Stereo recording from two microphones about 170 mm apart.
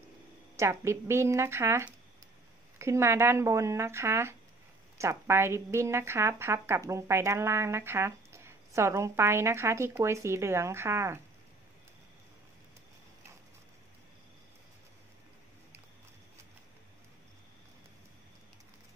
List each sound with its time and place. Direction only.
0.6 s speech: 15° right (ahead or behind)